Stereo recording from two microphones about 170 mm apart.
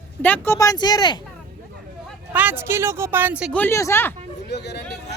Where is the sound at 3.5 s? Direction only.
15° left (ahead or behind).